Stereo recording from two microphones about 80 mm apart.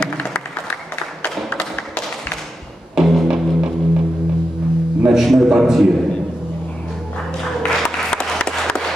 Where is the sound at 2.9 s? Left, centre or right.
Centre.